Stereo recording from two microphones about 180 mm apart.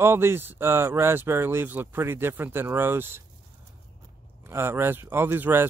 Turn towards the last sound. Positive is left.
turn(degrees=-10)  # may be behind; listen again after turning